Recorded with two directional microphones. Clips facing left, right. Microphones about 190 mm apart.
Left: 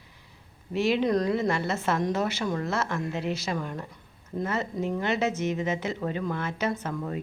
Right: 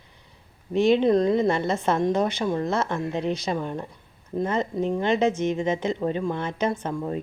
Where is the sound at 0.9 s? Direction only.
25° right (ahead or behind).